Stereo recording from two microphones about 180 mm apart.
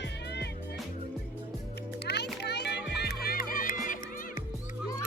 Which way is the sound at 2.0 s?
65° left (ahead or behind).